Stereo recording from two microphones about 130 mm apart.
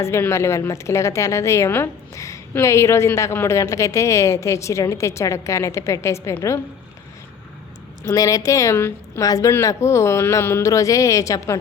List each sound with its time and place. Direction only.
0.0 s a woman's voice: 20° left (ahead or behind)
8.0 s a woman's voice: 25° left (ahead or behind)